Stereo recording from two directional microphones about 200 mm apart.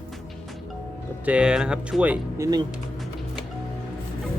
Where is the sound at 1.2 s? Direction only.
5° right (ahead or behind).